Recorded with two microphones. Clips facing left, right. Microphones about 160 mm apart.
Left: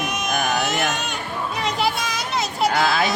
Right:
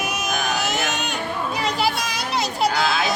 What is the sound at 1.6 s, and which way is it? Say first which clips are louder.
Children playing: left 1 dB; centre (ahead or behind).